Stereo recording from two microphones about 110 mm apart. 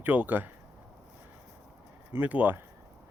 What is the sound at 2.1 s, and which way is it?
Speech, 15° right (ahead or behind).